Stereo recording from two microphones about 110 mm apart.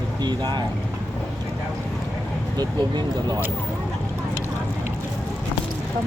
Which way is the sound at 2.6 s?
40° right (ahead or behind).